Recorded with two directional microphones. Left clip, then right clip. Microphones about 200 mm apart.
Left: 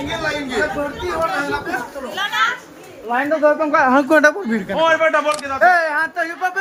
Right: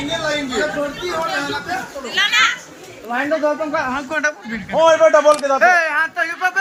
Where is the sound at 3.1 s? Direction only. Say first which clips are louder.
Left 3 dB; 20° left (ahead or behind).